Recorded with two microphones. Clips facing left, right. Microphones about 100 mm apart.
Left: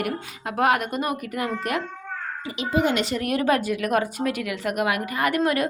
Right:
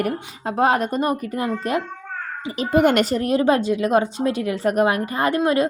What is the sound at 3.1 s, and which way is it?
Speech, 30° right (ahead or behind).